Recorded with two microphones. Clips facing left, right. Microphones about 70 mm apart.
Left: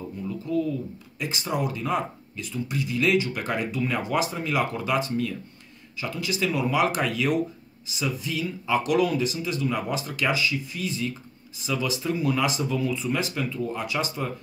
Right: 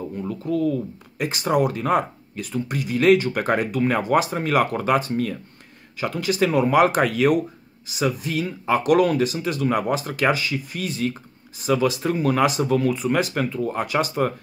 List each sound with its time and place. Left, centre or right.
0.2 s speech: right